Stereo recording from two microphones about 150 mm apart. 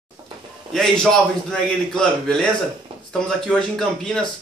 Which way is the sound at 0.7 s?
5° left (ahead or behind).